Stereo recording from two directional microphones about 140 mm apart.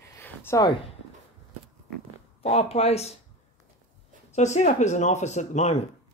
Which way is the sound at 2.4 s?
45° left (ahead or behind).